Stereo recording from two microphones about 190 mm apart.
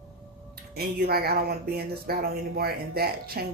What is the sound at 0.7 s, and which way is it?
Speech, 55° right (ahead or behind).